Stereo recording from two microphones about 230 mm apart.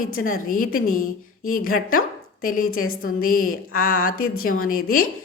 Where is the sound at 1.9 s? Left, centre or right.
Left.